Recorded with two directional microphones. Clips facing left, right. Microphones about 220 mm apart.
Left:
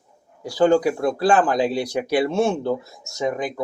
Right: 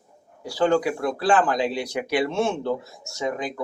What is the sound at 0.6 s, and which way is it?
Speech, 35° left (ahead or behind).